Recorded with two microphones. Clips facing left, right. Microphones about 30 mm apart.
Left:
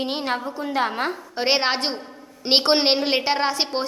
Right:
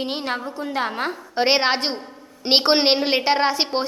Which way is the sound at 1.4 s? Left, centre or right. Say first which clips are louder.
Right 3 dB; centre.